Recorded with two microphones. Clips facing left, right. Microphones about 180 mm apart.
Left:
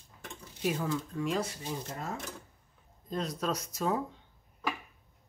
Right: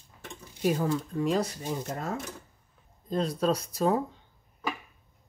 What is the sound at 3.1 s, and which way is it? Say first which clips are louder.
Speech: right 6 dB; 30° right (ahead or behind).